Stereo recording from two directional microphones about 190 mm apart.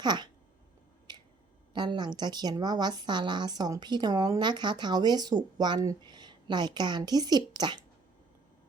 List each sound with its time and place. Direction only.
0.0 s a woman's voice: 25° right (ahead or behind)
1.1 s finger snapping: 20° right (ahead or behind)
1.7 s a woman's voice: 25° right (ahead or behind)